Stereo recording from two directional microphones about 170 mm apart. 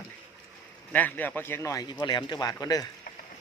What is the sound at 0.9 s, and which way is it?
Speech, 10° left (ahead or behind).